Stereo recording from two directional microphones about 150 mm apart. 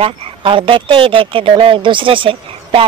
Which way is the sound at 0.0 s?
35° right (ahead or behind).